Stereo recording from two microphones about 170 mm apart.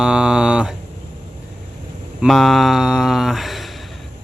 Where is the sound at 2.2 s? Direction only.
Centre (ahead or behind).